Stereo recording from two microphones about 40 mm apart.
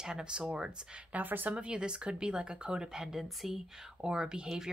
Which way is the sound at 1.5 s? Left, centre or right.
Right.